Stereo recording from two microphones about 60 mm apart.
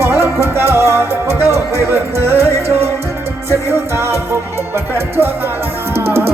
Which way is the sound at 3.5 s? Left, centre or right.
Right.